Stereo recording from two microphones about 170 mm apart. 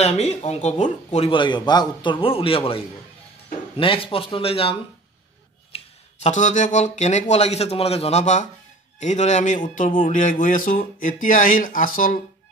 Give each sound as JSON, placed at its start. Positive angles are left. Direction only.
{"t": 0.0, "sound": "speech", "side_deg": 40}
{"t": 5.7, "sound": "a sound", "side_deg": 35}
{"t": 6.2, "sound": "speech", "side_deg": 45}